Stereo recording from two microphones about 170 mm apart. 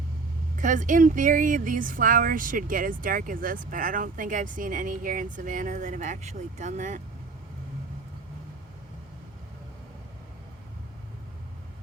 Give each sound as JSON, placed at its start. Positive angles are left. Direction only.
{"t": 0.6, "sound": "speech", "side_deg": -50}